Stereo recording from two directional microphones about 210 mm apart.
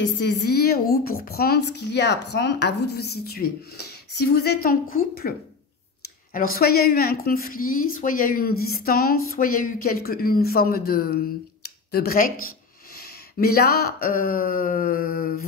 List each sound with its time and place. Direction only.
0.0 s speech: 55° left (ahead or behind)
6.3 s speech: 45° left (ahead or behind)